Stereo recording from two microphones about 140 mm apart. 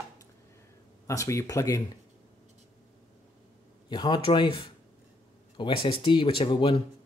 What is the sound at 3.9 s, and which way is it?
Speech, 35° left (ahead or behind).